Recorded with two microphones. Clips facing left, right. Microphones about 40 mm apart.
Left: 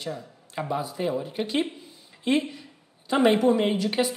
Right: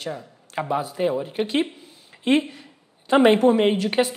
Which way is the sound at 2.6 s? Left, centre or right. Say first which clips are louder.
Right 1 dB; right.